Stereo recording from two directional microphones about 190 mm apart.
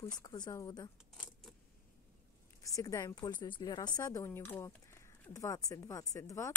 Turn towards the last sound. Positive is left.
turn(degrees=15)  # may be behind; listen again after turning